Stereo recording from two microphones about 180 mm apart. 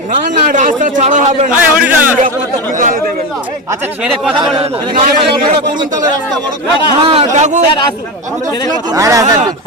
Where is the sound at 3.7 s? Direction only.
10° right (ahead or behind).